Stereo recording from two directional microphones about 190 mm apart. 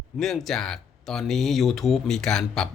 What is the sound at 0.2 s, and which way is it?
Speech, centre (ahead or behind).